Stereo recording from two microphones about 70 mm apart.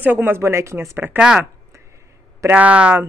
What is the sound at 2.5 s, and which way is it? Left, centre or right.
Speech, centre.